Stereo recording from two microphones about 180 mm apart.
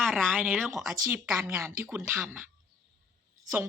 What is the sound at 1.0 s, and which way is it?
A woman's voice, 15° right (ahead or behind).